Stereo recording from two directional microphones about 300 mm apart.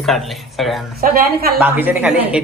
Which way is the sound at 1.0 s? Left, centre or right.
Right.